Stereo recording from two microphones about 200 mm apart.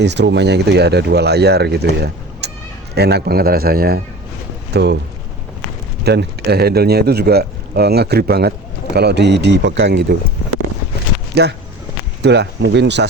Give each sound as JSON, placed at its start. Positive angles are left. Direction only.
{"t": 0.0, "sound": "speech", "side_deg": -60}
{"t": 6.1, "sound": "speech", "side_deg": -55}
{"t": 11.3, "sound": "speech", "side_deg": -55}